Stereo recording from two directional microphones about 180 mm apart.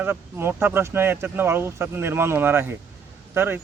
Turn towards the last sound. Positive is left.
turn(degrees=-10)  # may be behind; listen again after turning